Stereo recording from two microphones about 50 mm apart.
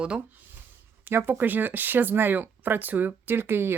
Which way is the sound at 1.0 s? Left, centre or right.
Right.